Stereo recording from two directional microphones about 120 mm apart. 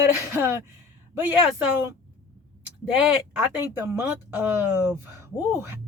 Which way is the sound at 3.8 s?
25° right (ahead or behind).